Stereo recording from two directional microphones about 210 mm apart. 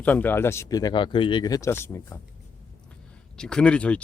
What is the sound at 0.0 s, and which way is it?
Speech, 10° left (ahead or behind).